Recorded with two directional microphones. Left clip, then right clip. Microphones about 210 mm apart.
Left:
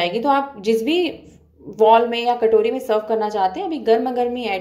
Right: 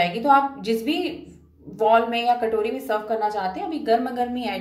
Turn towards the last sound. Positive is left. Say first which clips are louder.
# left 5 dB
turn(degrees=30)  # may be behind; listen again after turning